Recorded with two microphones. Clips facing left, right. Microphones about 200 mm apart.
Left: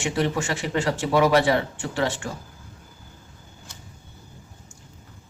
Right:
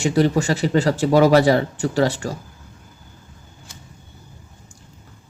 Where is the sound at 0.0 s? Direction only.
40° right (ahead or behind).